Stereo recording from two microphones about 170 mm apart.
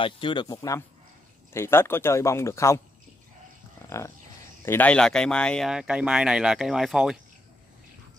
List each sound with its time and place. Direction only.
0.0 s speech: 30° left (ahead or behind)
3.9 s speech: 15° left (ahead or behind); by 7.2 s centre (ahead or behind)